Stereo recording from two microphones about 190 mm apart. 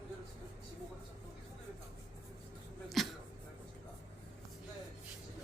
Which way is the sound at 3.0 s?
Centre (ahead or behind).